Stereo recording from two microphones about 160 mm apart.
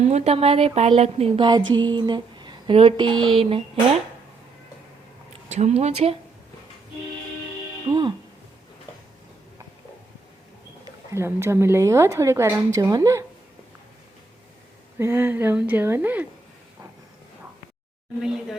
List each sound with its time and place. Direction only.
0.0 s speech: 45° right (ahead or behind)
1.5 s speech: 25° right (ahead or behind)
3.1 s speech: 5° left (ahead or behind)
3.3 s speech: 40° right (ahead or behind)
5.5 s speech: 45° right (ahead or behind)
7.9 s speech: 30° right (ahead or behind)
11.1 s a woman's voice: 15° right (ahead or behind)
14.9 s a woman's voice: 15° right (ahead or behind)